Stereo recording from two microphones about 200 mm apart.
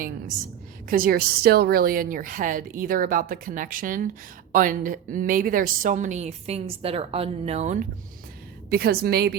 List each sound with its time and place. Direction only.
0.9 s a woman's voice: 45° right (ahead or behind)
8.7 s a woman's voice: 50° right (ahead or behind)